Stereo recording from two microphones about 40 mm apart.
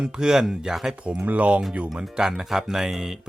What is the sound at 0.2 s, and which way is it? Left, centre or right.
Speech, centre.